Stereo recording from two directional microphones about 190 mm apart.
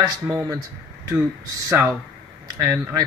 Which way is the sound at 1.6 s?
15° right (ahead or behind).